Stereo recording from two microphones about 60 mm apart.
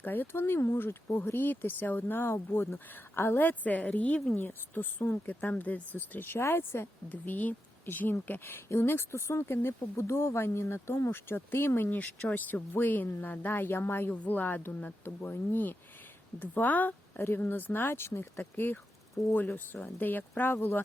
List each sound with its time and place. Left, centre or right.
0.0 s speech: left
7.1 s speech: left
14.1 s speech: left